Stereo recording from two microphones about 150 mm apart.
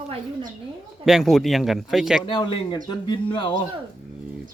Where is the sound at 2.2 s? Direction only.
30° left (ahead or behind).